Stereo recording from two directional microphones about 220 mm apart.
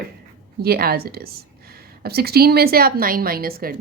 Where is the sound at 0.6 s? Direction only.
45° right (ahead or behind).